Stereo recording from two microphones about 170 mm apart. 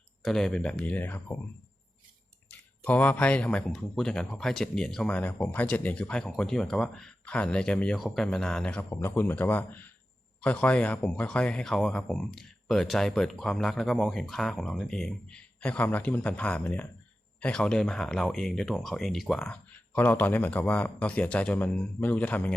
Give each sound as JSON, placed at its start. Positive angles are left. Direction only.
{"t": 0.3, "sound": "speech", "side_deg": 5}
{"t": 2.5, "sound": "speech", "side_deg": 10}